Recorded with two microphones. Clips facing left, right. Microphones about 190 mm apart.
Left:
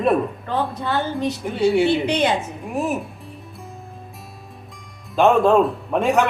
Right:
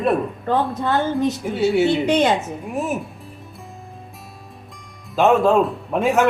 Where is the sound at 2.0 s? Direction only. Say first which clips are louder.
Right 3 dB; 45° right (ahead or behind).